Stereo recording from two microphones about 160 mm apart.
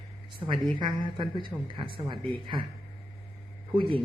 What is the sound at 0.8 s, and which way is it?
Speech, 30° right (ahead or behind).